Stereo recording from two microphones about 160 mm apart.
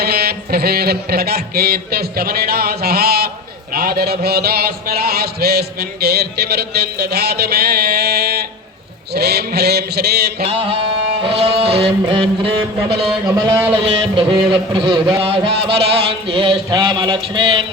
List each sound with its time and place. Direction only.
0.0 s music: 75° right (ahead or behind)
3.7 s a sound: 65° right (ahead or behind)
10.4 s music: 40° right (ahead or behind)
13.2 s speech: 25° right (ahead or behind)
13.7 s music: 35° right (ahead or behind)